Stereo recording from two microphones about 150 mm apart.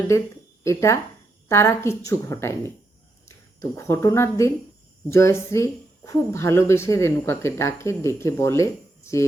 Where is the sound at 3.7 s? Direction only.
15° left (ahead or behind).